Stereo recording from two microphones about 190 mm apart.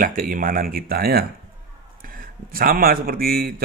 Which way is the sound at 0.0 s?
45° right (ahead or behind).